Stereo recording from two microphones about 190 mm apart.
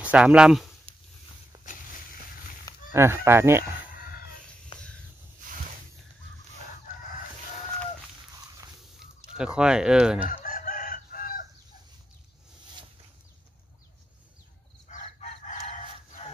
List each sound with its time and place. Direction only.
0.0 s speech: 5° right (ahead or behind)
0.9 s a sound: 30° right (ahead or behind)
2.9 s speech: 15° right (ahead or behind)
4.7 s a sound: 25° left (ahead or behind)
9.0 s speech: 5° right (ahead or behind)
10.4 s chicken: 45° left (ahead or behind)
14.9 s chicken: 35° left (ahead or behind)